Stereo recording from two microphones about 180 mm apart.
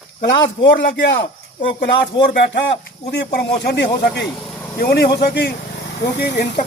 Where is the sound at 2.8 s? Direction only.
65° left (ahead or behind).